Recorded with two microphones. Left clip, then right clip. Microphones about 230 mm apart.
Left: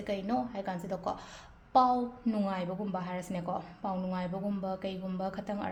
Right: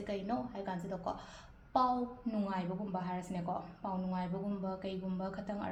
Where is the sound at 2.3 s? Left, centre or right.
Left.